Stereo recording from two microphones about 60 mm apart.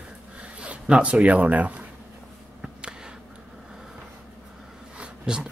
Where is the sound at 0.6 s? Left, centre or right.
Centre.